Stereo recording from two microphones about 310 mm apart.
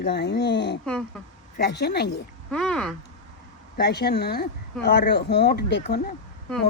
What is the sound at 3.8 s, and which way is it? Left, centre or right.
Speech, left.